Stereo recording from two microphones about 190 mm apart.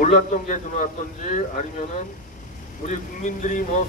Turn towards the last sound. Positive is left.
turn(degrees=40)  # may be behind; listen again after turning